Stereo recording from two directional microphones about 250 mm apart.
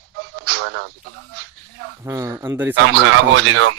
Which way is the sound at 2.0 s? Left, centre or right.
Centre.